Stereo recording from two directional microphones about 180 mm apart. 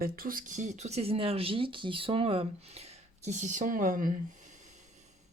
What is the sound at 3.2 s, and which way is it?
Speech, 40° right (ahead or behind).